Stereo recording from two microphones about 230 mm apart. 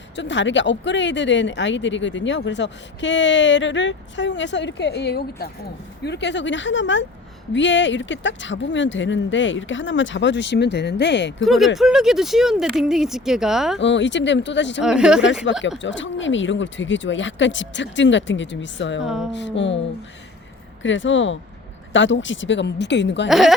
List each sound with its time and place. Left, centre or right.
0.2 s speech: left
11.4 s speech: centre
13.7 s speech: left
14.8 s speech: centre
15.8 s speech: left
19.0 s speech: centre
19.3 s speech: left
20.8 s speech: left
23.3 s speech: centre